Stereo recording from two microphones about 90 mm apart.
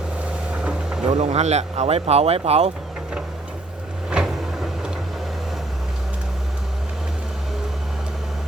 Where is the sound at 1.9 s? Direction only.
90° right.